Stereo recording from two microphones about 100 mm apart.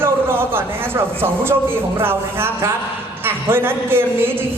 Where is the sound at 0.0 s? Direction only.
25° right (ahead or behind).